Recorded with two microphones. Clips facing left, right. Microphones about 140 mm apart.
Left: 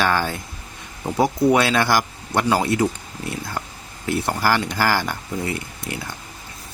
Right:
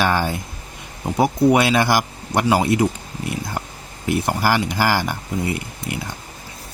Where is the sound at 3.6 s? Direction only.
15° right (ahead or behind).